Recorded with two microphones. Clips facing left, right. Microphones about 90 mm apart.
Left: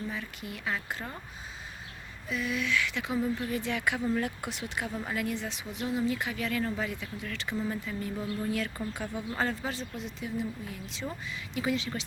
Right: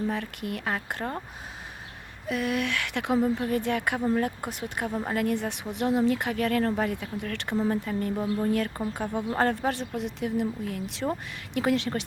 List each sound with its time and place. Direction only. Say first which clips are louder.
0.1 s speech: right 7 dB; 60° right (ahead or behind)
2.2 s speech: right 5 dB; 60° right (ahead or behind)
3.2 s speech: right 5 dB; 40° right (ahead or behind)
4.9 s a woman's voice: right 5 dB; 30° right (ahead or behind)
5.1 s speech: right 6 dB; 50° right (ahead or behind)
8.1 s speech: right 6 dB; 30° right (ahead or behind)
8.4 s speech: right 6 dB; 45° right (ahead or behind); by 11.9 s 65° right (ahead or behind)